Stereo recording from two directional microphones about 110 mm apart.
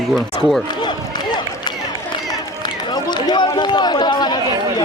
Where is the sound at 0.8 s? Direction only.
40° left (ahead or behind).